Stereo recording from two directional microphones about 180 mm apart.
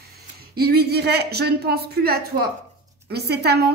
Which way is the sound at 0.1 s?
60° right (ahead or behind).